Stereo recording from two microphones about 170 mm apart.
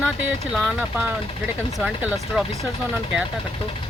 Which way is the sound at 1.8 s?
5° right (ahead or behind).